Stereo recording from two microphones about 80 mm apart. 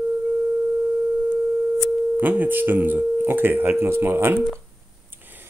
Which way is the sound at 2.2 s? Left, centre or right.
Right.